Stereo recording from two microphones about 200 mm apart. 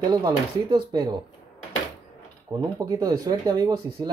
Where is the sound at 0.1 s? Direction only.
20° right (ahead or behind).